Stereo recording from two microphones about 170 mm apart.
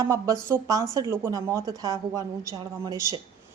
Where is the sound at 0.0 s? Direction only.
20° right (ahead or behind).